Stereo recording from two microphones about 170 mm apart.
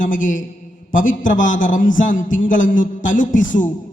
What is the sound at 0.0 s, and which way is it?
A man's voice, 50° left (ahead or behind).